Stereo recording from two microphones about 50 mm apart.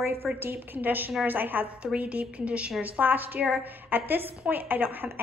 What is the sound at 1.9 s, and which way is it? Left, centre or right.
A woman's voice, right.